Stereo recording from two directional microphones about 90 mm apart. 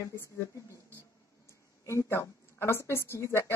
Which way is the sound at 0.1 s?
30° left (ahead or behind).